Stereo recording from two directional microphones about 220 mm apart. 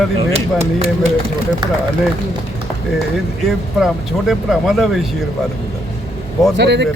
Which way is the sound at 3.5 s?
Centre (ahead or behind).